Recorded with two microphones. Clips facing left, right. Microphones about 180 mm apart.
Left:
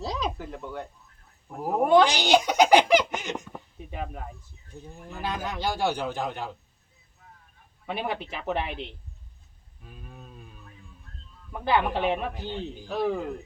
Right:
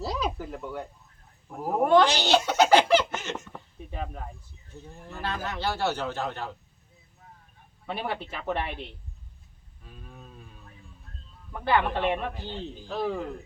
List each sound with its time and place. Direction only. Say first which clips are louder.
0.0 s a sound: right 1 dB; 5° right (ahead or behind)
1.5 s a man's voice: left 1 dB; centre (ahead or behind)
7.9 s a man's voice: left 1 dB; 10° left (ahead or behind)
9.8 s cattle: left 1 dB; 10° left (ahead or behind)
11.5 s a man's voice: even; 10° left (ahead or behind)